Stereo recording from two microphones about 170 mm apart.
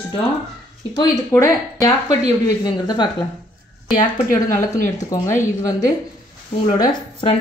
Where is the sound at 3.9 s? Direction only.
50° left (ahead or behind).